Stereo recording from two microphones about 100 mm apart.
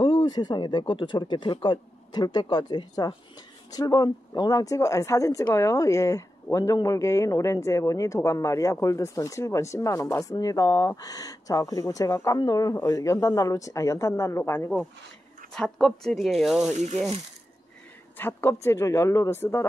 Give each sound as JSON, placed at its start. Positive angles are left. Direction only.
{"t": 0.0, "sound": "speech", "side_deg": 50}
{"t": 15.5, "sound": "speech", "side_deg": 5}
{"t": 18.1, "sound": "speech", "side_deg": 25}